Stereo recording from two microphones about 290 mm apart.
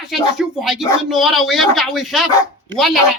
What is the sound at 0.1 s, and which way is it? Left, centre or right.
Speech, centre.